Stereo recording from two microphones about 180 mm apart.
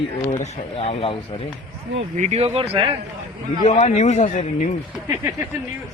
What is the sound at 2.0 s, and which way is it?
Speech, 35° right (ahead or behind).